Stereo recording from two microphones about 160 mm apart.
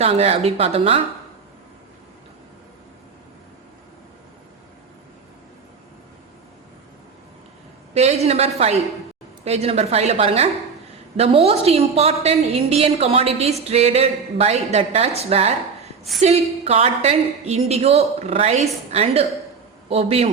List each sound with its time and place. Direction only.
0.0 s a woman's voice: 40° right (ahead or behind)
7.9 s a woman's voice: 40° right (ahead or behind)